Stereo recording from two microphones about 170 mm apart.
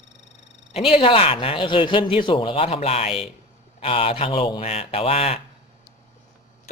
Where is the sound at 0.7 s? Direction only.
35° left (ahead or behind).